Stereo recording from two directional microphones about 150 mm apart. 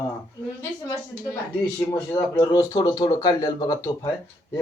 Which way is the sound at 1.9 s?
15° left (ahead or behind).